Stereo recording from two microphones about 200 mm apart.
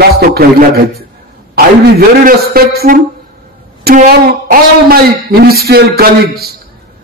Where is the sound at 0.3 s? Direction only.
50° right (ahead or behind).